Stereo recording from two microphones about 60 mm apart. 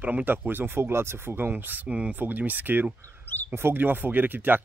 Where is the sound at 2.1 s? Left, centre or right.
Right.